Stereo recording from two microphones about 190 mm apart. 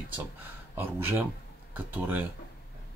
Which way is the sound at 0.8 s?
10° right (ahead or behind).